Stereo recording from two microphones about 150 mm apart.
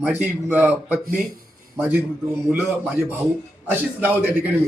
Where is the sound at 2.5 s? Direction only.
15° right (ahead or behind).